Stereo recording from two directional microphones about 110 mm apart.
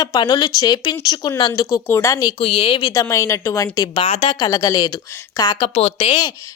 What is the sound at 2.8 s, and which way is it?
A woman's voice, 35° left (ahead or behind).